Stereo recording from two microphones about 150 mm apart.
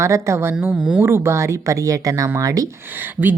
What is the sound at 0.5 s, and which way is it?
Speech, 5° right (ahead or behind).